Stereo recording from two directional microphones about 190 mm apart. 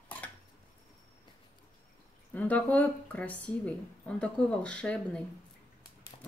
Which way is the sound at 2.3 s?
10° left (ahead or behind).